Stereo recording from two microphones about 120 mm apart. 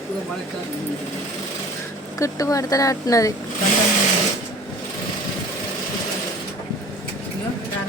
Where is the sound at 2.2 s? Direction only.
30° left (ahead or behind).